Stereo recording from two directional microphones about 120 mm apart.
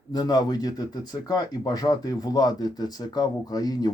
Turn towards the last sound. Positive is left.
turn(degrees=30)  # may be behind; listen again after turning